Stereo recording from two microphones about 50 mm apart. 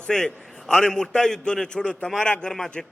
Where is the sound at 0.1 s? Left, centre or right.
Centre.